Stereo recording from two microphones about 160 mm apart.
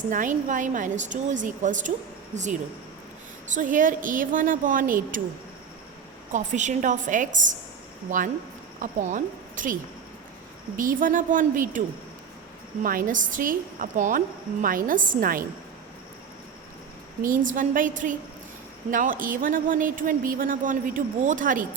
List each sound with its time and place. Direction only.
0.1 s a woman's voice: 55° right (ahead or behind)
6.3 s a woman's voice: 50° right (ahead or behind)
8.8 s a woman's voice: 55° right (ahead or behind)
10.8 s a woman's voice: 55° right (ahead or behind)
12.8 s a woman's voice: 60° right (ahead or behind)
17.2 s a woman's voice: 55° right (ahead or behind)